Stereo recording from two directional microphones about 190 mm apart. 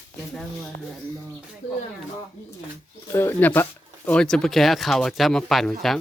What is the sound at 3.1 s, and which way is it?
Speech, 10° left (ahead or behind).